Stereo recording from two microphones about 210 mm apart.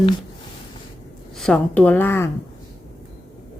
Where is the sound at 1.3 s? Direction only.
5° left (ahead or behind).